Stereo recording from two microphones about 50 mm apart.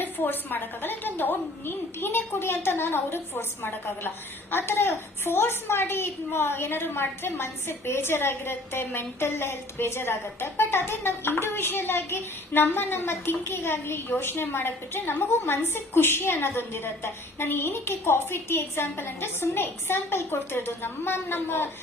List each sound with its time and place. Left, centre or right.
0.0 s a child's voice: left